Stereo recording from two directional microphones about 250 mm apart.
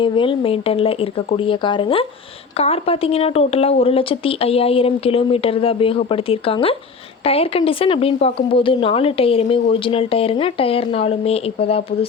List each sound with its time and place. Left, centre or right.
0.0 s speech: left